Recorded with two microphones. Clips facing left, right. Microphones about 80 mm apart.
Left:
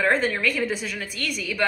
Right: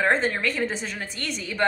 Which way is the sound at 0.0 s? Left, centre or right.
Right.